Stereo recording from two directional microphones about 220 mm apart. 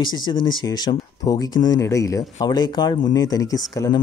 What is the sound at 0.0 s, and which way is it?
Speech, 20° left (ahead or behind).